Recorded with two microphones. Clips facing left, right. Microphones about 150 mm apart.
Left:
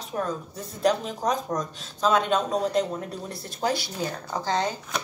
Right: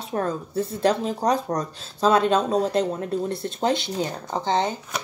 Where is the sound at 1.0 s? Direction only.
35° right (ahead or behind).